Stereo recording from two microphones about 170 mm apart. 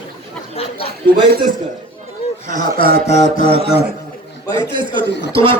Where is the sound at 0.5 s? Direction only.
35° left (ahead or behind).